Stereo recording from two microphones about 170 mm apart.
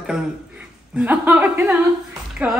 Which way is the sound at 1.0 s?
10° right (ahead or behind).